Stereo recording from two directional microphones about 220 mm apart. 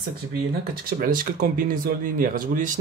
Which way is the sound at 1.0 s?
40° right (ahead or behind).